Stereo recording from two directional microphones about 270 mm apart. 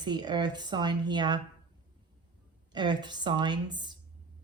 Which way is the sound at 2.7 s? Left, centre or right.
Centre.